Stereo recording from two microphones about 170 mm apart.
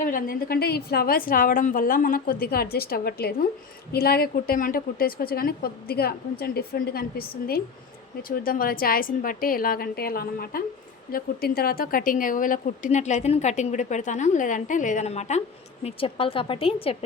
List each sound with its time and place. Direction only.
0.0 s a woman's voice: 55° left (ahead or behind); by 17.0 s 35° left (ahead or behind)